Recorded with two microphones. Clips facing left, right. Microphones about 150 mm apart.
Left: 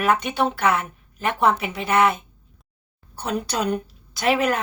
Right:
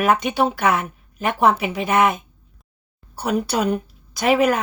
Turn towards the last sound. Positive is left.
turn(degrees=-10)  # may be behind; listen again after turning